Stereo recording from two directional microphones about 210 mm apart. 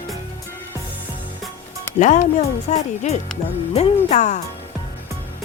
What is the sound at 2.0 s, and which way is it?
Speech, 35° left (ahead or behind).